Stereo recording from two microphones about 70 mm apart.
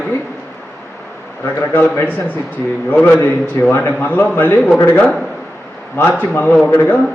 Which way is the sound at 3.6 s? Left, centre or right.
Left.